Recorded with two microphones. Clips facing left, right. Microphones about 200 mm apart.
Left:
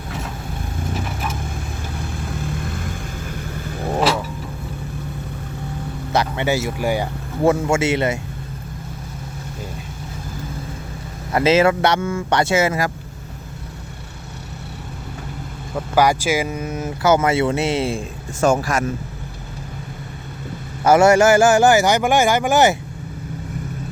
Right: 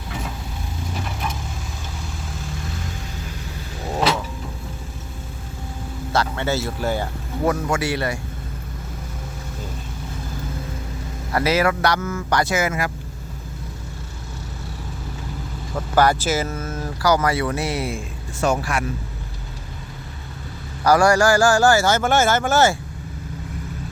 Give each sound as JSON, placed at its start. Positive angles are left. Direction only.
{"t": 2.6, "sound": "vehicle", "side_deg": 55}
{"t": 6.1, "sound": "speech", "side_deg": 15}
{"t": 7.4, "sound": "speech", "side_deg": 25}
{"t": 11.3, "sound": "speech", "side_deg": 25}
{"t": 15.7, "sound": "speech", "side_deg": 10}
{"t": 18.3, "sound": "speech", "side_deg": 45}
{"t": 20.8, "sound": "speech", "side_deg": 25}